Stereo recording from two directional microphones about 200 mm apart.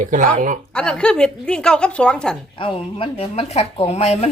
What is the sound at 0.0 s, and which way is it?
Speech, 40° right (ahead or behind).